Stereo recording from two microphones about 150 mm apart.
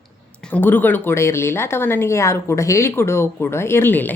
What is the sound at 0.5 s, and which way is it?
A woman's voice, 15° left (ahead or behind).